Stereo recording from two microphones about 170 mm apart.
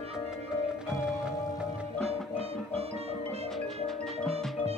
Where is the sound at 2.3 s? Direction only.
35° right (ahead or behind).